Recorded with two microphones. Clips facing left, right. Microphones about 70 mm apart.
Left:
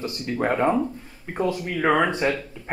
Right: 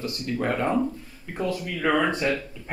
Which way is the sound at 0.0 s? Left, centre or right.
Left.